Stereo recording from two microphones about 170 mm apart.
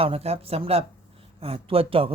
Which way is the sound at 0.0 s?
35° right (ahead or behind).